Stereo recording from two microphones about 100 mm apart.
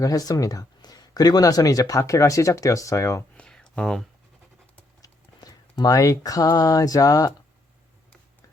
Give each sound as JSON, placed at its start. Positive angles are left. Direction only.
{"t": 0.0, "sound": "speech", "side_deg": 35}
{"t": 3.3, "sound": "a sound", "side_deg": 10}
{"t": 5.0, "sound": "speech", "side_deg": 40}